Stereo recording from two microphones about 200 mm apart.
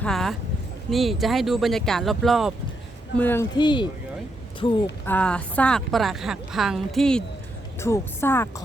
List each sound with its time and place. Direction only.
0.0 s a woman's voice: centre (ahead or behind)
3.5 s speech: 20° left (ahead or behind)
5.0 s a woman's voice: 5° left (ahead or behind)
7.8 s speech: 15° left (ahead or behind)